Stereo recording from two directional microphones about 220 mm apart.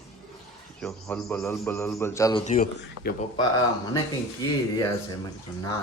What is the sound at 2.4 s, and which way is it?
Speech, 40° left (ahead or behind).